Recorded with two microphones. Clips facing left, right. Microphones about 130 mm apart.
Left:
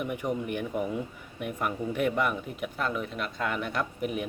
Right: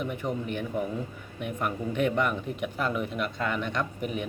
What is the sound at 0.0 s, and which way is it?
A man's voice, 10° left (ahead or behind).